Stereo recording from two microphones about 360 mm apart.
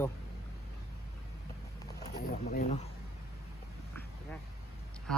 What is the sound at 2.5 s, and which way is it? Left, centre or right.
Speech, left.